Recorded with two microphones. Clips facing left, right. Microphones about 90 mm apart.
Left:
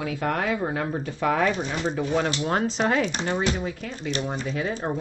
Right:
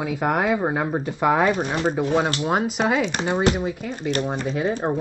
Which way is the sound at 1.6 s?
50° right (ahead or behind).